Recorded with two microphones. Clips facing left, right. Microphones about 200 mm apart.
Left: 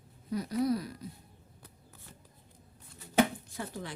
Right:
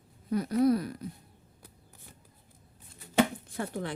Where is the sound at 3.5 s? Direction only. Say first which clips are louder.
Right 5 dB; 60° right (ahead or behind).